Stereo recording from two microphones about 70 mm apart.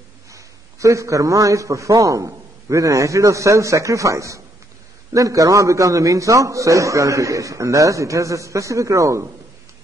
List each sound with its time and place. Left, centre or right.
0.3 s a man's voice: right